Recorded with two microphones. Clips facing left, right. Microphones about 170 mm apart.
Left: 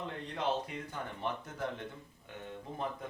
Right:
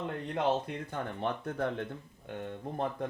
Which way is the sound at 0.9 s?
60° right (ahead or behind).